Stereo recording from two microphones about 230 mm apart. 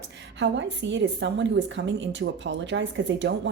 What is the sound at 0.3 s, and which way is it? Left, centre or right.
Speech, right.